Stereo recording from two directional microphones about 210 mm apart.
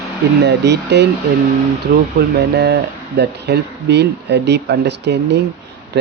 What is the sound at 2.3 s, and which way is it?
Speech, 50° right (ahead or behind).